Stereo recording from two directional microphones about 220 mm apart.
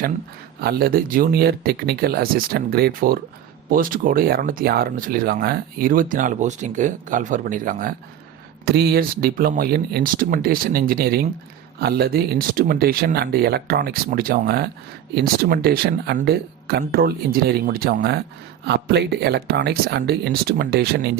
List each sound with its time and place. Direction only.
0.6 s speech: 45° right (ahead or behind)